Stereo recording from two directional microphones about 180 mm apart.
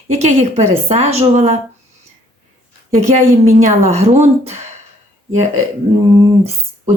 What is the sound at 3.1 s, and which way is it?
Speech, 40° right (ahead or behind).